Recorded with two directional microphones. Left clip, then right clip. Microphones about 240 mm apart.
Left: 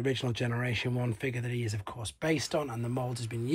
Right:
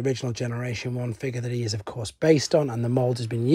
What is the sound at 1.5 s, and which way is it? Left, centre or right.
Speech, right.